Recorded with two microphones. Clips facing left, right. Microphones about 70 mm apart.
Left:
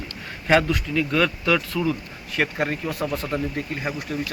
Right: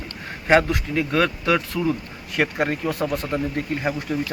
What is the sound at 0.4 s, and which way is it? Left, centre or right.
Speech, right.